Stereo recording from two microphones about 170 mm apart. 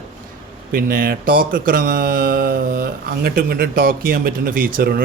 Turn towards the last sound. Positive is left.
turn(degrees=-60)  # may be behind; listen again after turning